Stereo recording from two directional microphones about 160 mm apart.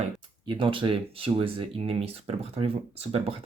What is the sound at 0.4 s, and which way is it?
Speech, 30° right (ahead or behind).